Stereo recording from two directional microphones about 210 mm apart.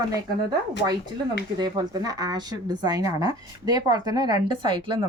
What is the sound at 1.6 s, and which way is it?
Speech, 20° right (ahead or behind).